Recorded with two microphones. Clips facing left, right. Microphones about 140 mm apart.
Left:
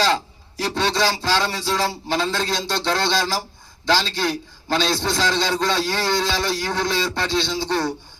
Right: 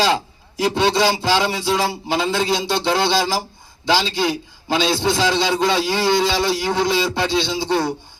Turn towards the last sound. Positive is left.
turn(degrees=-15)  # may be behind; listen again after turning